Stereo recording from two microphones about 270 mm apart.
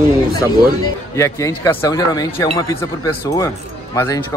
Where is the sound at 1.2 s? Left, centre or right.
Centre.